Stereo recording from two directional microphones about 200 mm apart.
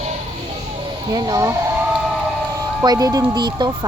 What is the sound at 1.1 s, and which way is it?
Speech, 20° right (ahead or behind).